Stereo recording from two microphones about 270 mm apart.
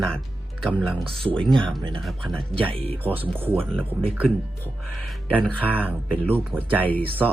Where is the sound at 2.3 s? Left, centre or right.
Centre.